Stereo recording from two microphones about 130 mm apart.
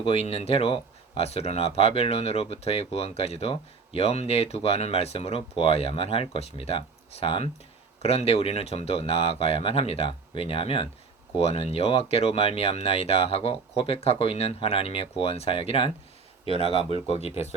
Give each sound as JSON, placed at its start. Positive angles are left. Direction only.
{"t": 0.0, "sound": "speech", "side_deg": 50}